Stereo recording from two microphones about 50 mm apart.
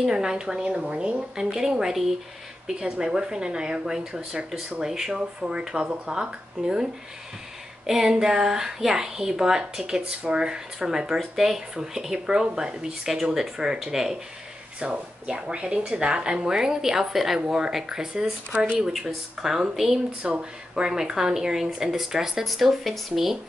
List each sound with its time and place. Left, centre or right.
0.0 s speech: centre
20.2 s speech: centre